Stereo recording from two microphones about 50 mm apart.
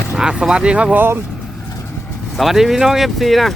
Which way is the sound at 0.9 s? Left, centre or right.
Right.